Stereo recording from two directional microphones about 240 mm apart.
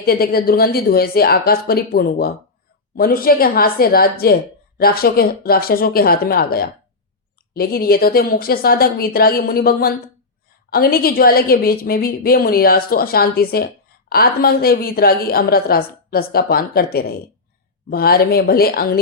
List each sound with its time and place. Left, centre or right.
0.0 s a woman's voice: left